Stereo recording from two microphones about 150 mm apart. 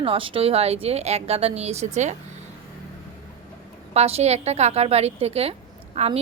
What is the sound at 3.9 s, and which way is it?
A woman's voice, 45° right (ahead or behind).